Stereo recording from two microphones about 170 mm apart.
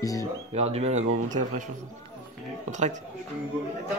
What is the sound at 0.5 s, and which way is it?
Speech, 40° right (ahead or behind).